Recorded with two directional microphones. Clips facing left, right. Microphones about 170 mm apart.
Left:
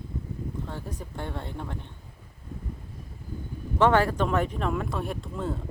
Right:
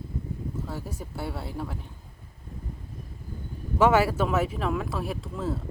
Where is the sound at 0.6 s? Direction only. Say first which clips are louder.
Right 1 dB; 5° right (ahead or behind).